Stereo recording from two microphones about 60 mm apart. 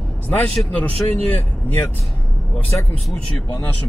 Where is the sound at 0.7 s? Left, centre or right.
Left.